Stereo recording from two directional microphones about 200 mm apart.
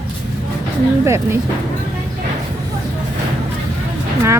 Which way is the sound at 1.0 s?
15° right (ahead or behind).